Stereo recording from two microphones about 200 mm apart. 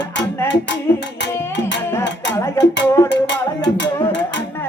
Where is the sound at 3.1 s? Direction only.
60° left (ahead or behind).